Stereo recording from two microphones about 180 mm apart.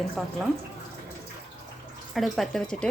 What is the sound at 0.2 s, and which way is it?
Speech, centre (ahead or behind).